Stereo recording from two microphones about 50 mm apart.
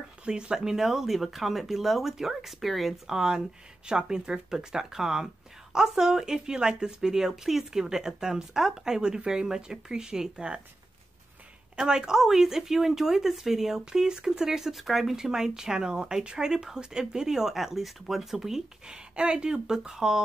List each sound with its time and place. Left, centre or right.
0.2 s speech: centre
3.1 s speech: centre
11.7 s speech: centre
15.1 s speech: centre